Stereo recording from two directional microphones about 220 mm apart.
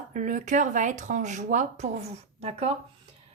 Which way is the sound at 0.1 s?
35° right (ahead or behind).